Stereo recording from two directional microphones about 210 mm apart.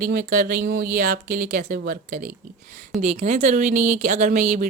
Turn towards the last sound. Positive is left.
turn(degrees=-35)  # may be behind; listen again after turning